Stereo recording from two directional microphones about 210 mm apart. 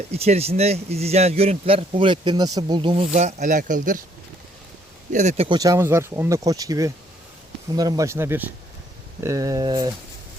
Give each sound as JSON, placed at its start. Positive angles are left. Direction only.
{"t": 0.1, "sound": "speech", "side_deg": -30}
{"t": 5.1, "sound": "speech", "side_deg": -35}
{"t": 5.5, "sound": "speech", "side_deg": -15}